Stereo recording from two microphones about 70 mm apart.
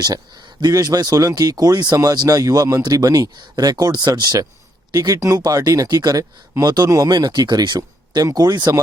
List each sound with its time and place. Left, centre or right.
0.6 s speech: right
5.4 s speech: right
6.8 s speech: right
7.1 s speech: right